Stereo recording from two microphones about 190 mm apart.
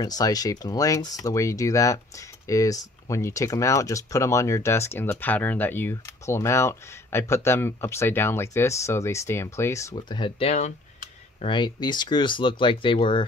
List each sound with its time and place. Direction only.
0.0 s speech: 20° left (ahead or behind)